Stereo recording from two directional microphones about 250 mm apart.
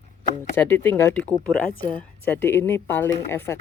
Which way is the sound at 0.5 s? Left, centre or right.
Centre.